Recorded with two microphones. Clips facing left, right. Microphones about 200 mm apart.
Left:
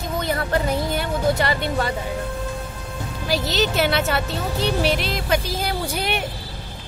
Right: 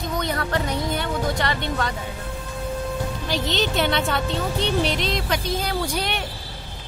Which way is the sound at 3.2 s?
5° left (ahead or behind).